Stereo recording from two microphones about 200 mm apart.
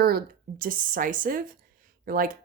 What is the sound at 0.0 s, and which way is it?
Speech, 50° right (ahead or behind).